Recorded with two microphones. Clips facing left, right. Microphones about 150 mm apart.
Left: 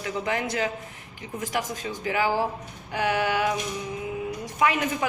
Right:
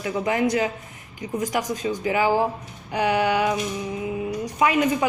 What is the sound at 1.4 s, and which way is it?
Speech, 40° right (ahead or behind).